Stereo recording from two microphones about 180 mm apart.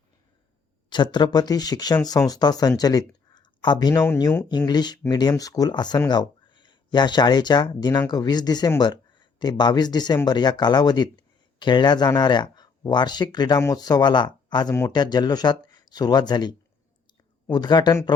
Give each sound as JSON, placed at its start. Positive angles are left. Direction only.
{"t": 0.9, "sound": "speech", "side_deg": 25}